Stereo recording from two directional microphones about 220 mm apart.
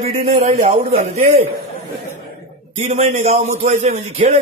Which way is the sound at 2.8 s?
30° right (ahead or behind).